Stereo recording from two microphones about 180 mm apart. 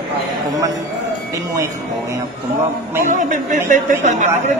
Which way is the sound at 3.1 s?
45° right (ahead or behind).